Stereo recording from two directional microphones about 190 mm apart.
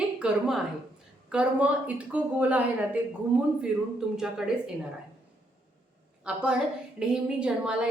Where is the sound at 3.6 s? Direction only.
5° right (ahead or behind).